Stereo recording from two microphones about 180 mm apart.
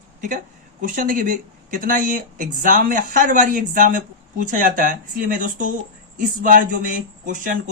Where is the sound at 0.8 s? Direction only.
50° right (ahead or behind).